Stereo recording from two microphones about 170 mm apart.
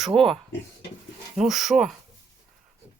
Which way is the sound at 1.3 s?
Centre (ahead or behind).